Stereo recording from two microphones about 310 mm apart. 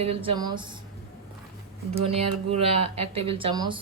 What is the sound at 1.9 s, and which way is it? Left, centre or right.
A woman's voice, centre.